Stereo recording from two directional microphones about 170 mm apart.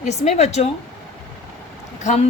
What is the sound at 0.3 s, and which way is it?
Speech, 40° left (ahead or behind).